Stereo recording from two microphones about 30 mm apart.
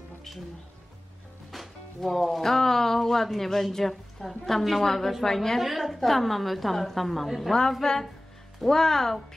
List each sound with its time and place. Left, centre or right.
1.5 s a woman's voice: centre
5.6 s a woman's voice: centre
7.8 s a woman's voice: centre